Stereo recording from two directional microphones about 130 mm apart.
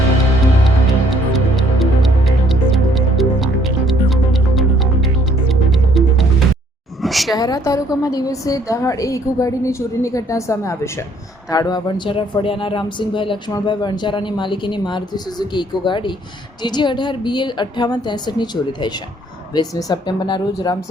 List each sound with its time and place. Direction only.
1.1 s music: centre (ahead or behind)
7.0 s a sound: centre (ahead or behind)
7.3 s a woman's voice: 30° left (ahead or behind)